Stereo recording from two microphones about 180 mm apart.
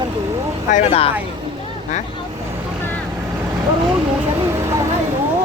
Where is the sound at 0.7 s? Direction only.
35° left (ahead or behind).